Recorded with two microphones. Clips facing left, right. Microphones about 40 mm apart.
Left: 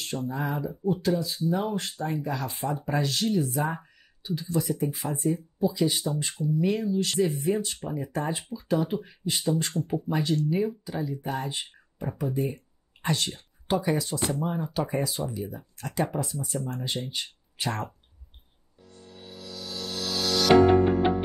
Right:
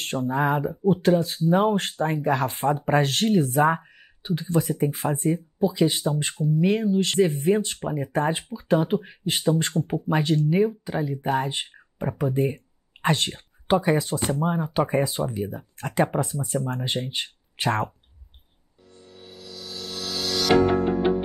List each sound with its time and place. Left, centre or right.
0.0 s speech: right
19.2 s music: centre